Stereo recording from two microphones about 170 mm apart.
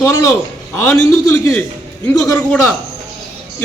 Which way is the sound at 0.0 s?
20° left (ahead or behind).